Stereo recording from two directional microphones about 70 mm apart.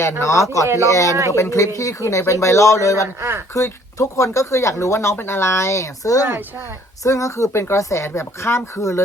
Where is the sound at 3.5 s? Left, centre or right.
Left.